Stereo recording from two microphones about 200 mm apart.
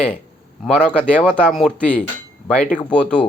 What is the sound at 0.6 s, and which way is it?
Speech, 5° left (ahead or behind).